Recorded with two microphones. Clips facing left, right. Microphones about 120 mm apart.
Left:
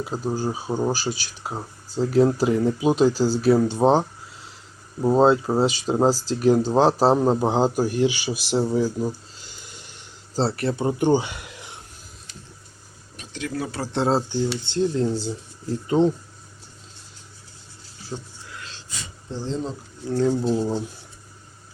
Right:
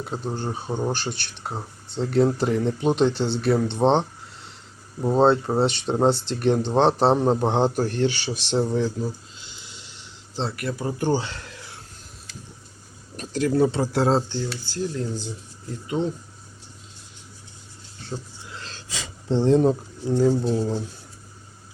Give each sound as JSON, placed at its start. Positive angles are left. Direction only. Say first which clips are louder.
{"t": 0.0, "sound": "speech", "louder": "left 3 dB", "side_deg": 5}
{"t": 9.4, "sound": "a sound", "louder": "left 1 dB", "side_deg": 45}
{"t": 10.4, "sound": "speech", "louder": "left 5 dB", "side_deg": 30}
{"t": 13.1, "sound": "a sound", "louder": "right 8 dB", "side_deg": -40}
{"t": 13.5, "sound": "speech", "louder": "right 9 dB", "side_deg": -25}
{"t": 13.9, "sound": "speech", "louder": "right 1 dB", "side_deg": 0}
{"t": 14.3, "sound": "speech", "louder": "left 5 dB", "side_deg": 15}
{"t": 14.5, "sound": "speech", "louder": "left 6 dB", "side_deg": 25}
{"t": 18.1, "sound": "speech", "louder": "even", "side_deg": 0}
{"t": 18.9, "sound": "speech", "louder": "right 11 dB", "side_deg": -90}
{"t": 20.2, "sound": "speech", "louder": "left 1 dB", "side_deg": 0}